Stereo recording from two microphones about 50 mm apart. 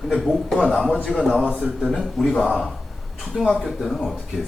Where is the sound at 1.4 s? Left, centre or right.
Right.